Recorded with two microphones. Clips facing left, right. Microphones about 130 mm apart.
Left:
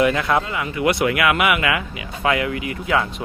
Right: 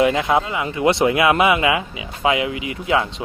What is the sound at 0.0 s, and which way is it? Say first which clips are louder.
Speech: right 1 dB; 25° right (ahead or behind).